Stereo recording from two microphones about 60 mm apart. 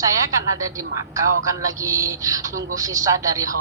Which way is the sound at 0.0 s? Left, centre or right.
Right.